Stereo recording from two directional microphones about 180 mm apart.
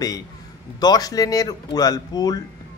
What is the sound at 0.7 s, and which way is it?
Speech, 20° left (ahead or behind).